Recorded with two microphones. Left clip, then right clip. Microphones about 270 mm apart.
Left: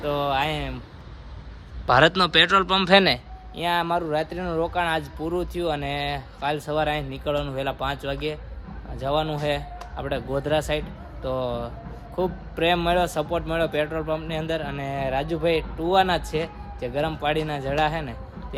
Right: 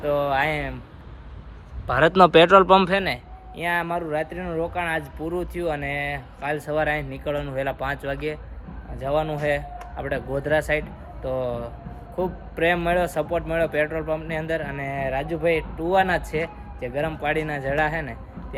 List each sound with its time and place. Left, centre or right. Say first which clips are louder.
0.0 s a man's voice: right 2 dB; centre
2.0 s speech: right 4 dB; centre
2.9 s a man's voice: left 6 dB; left
3.5 s a man's voice: left 1 dB; centre